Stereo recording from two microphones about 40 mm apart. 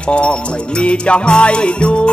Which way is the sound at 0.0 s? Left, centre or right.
Left.